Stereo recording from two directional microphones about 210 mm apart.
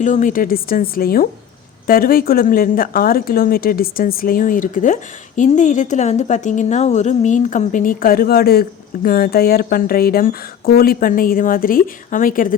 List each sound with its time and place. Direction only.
0.0 s a woman's voice: 35° left (ahead or behind)